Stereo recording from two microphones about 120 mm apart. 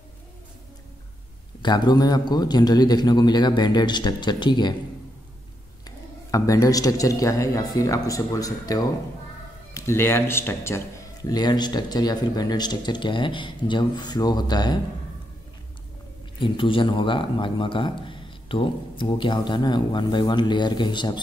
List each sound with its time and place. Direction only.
1.6 s speech: 35° left (ahead or behind)
5.9 s a man's voice: 30° left (ahead or behind)
11.2 s speech: 35° left (ahead or behind)
16.3 s speech: 45° left (ahead or behind)